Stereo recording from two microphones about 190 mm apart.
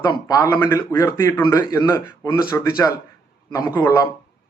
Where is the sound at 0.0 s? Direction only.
20° left (ahead or behind).